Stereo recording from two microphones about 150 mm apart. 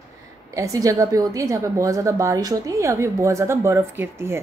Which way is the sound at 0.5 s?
20° right (ahead or behind).